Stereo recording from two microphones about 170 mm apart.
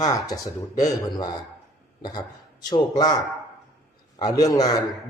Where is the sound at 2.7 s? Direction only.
25° left (ahead or behind).